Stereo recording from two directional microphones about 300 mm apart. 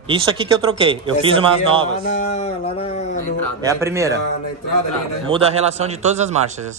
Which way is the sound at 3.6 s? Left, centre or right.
Centre.